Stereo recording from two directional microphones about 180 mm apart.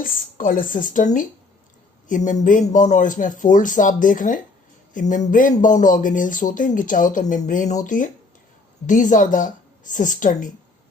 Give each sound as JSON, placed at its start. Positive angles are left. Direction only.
{"t": 0.0, "sound": "speech", "side_deg": 50}